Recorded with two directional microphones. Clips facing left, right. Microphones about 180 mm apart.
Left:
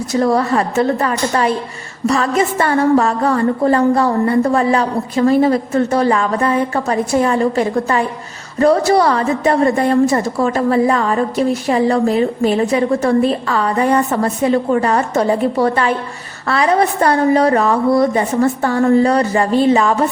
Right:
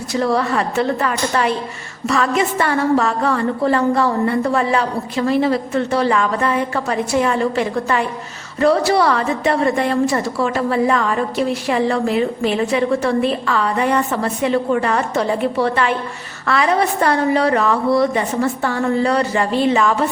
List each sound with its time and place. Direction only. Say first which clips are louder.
0.1 s a woman's voice: left 3 dB; 40° left (ahead or behind)